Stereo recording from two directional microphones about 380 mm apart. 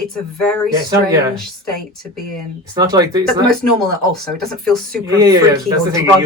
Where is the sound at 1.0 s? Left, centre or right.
Centre.